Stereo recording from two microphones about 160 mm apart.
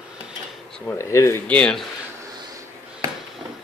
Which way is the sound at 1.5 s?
5° left (ahead or behind).